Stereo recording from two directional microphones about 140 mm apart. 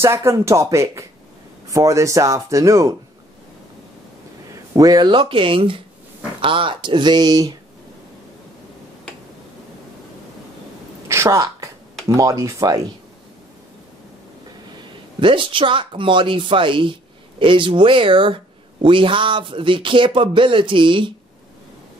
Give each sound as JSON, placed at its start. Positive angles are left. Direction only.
{"t": 0.0, "sound": "speech", "side_deg": -20}
{"t": 4.7, "sound": "speech", "side_deg": -30}
{"t": 11.1, "sound": "a sound", "side_deg": -20}
{"t": 12.1, "sound": "speech", "side_deg": -25}
{"t": 15.1, "sound": "speech", "side_deg": -35}